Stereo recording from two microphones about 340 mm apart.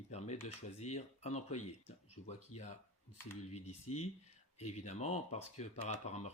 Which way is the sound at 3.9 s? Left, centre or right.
Left.